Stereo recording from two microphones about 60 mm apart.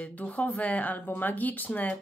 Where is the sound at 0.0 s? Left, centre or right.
Left.